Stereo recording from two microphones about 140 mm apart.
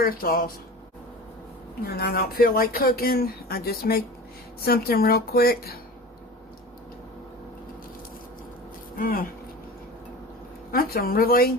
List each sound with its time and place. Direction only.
0.0 s speech: 90° left
1.8 s speech: 90° left
9.0 s speech: 90° left
10.7 s speech: 90° left